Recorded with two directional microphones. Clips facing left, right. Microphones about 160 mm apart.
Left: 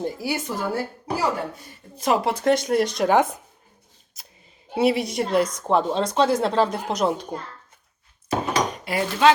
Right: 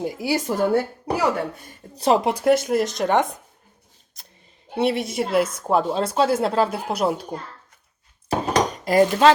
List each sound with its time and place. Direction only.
0.2 s speech: 25° right (ahead or behind)
0.4 s a woman's voice: 55° right (ahead or behind)
2.0 s speech: 30° right (ahead or behind)
2.2 s a woman's voice: 10° right (ahead or behind)
4.7 s a woman's voice: 5° left (ahead or behind)
8.4 s dishes: 40° right (ahead or behind)